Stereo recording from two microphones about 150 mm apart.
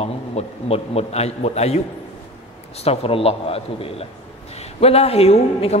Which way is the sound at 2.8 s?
40° left (ahead or behind).